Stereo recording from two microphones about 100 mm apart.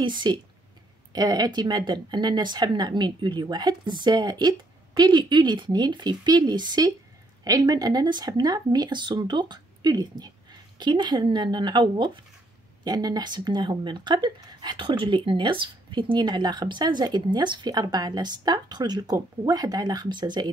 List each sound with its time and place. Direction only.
0.0 s speech: 50° right (ahead or behind)